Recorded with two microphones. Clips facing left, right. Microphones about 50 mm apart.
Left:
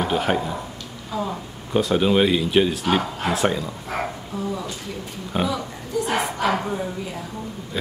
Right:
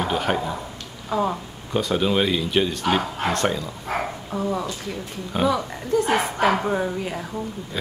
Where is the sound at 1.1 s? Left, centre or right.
Right.